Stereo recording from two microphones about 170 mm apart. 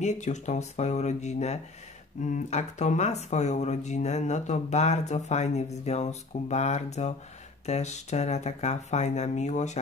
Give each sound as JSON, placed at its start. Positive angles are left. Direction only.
{"t": 0.0, "sound": "speech", "side_deg": 45}